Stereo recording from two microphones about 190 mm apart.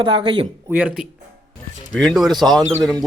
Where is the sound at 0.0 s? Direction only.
25° right (ahead or behind).